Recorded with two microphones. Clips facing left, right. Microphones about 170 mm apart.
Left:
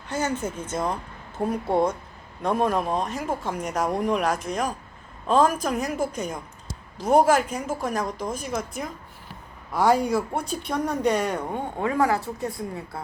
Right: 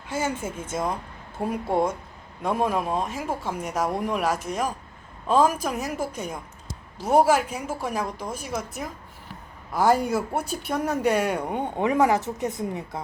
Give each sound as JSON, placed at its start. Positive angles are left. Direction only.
{"t": 0.1, "sound": "a woman's voice", "side_deg": -10}